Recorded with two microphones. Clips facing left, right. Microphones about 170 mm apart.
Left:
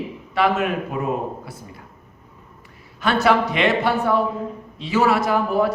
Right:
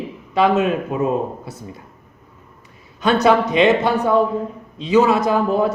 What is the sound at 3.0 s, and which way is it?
A man's voice, 20° right (ahead or behind).